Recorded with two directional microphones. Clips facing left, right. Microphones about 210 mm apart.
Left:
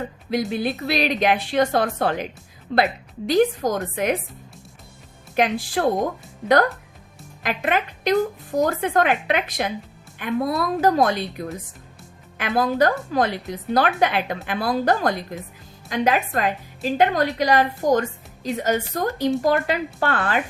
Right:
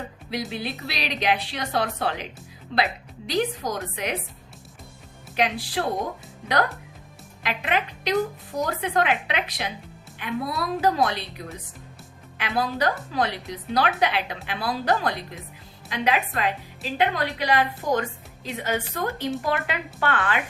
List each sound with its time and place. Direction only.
0.3 s a woman's voice: 50° left (ahead or behind)
5.4 s a woman's voice: 45° left (ahead or behind)
7.4 s a woman's voice: 45° left (ahead or behind)